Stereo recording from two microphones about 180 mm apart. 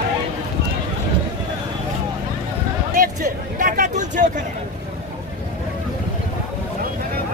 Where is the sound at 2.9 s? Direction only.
50° right (ahead or behind).